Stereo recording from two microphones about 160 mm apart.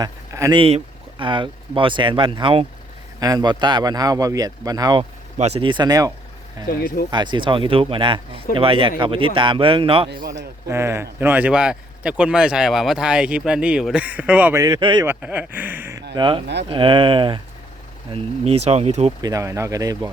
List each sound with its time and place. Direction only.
0.0 s speech: 20° right (ahead or behind)
1.2 s speech: 30° right (ahead or behind)
5.4 s speech: 40° right (ahead or behind); by 6.1 s 20° right (ahead or behind)
6.7 s speech: 65° left (ahead or behind)
7.1 s speech: 30° right (ahead or behind)
10.1 s a man's voice: 90° right
10.7 s speech: 15° right (ahead or behind)
14.6 s speech: 25° right (ahead or behind)
15.0 s speech: 10° right (ahead or behind)
16.1 s speech: 30° right (ahead or behind)
19.2 s speech: 20° right (ahead or behind)